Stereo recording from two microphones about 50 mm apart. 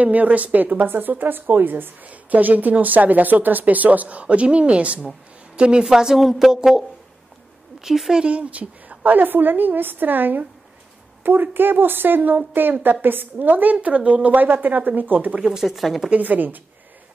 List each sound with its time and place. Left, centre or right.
0.0 s a woman's voice: right; by 8.2 s centre
8.2 s a woman's voice: right
15.4 s a woman's voice: centre
16.1 s a woman's voice: right